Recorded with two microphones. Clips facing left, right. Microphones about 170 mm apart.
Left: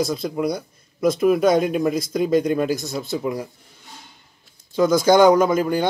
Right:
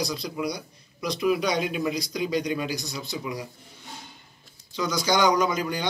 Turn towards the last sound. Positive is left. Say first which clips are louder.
# left 7 dB
turn(degrees=50)  # may be behind; listen again after turning